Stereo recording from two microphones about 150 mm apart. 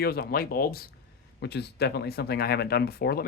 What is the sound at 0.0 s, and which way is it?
Speech, 90° left.